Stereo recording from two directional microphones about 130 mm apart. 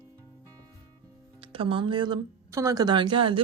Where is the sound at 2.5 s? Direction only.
25° right (ahead or behind); by 3.4 s 40° right (ahead or behind).